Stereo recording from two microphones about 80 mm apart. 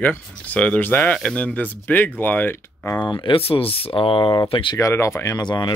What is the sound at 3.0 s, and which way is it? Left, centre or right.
Speech, left.